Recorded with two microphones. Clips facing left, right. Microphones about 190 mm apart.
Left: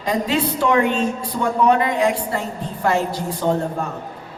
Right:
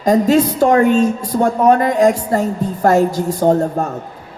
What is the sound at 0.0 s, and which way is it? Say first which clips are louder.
A woman's voice: right 8 dB; 45° right (ahead or behind).